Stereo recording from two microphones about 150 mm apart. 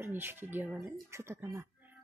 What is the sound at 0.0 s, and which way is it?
Speech, 15° right (ahead or behind).